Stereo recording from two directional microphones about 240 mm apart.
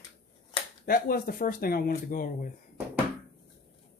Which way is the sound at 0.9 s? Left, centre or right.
Left.